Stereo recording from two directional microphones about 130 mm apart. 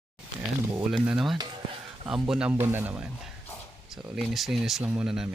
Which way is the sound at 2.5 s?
15° right (ahead or behind).